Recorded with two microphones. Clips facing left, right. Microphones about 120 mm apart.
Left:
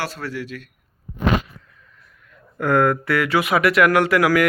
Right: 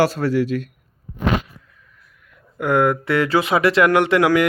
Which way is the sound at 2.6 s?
20° right (ahead or behind).